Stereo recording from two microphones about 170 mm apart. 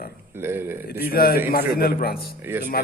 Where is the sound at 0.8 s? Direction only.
65° left (ahead or behind).